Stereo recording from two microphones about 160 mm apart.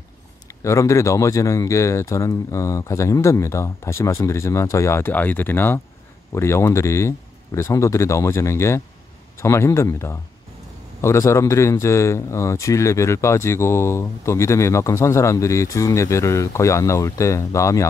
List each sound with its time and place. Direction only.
0.7 s a man's voice: 20° left (ahead or behind)